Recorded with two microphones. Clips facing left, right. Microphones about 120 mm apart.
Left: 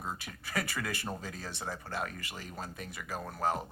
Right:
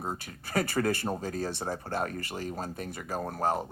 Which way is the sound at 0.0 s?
40° right (ahead or behind).